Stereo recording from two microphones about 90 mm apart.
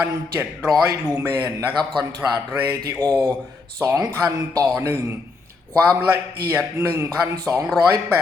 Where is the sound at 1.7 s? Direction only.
55° right (ahead or behind).